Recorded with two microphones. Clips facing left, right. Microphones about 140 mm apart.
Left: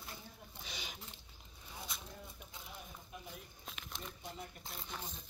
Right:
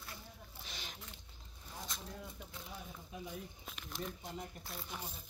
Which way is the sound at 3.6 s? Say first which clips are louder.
Right 3 dB; centre (ahead or behind).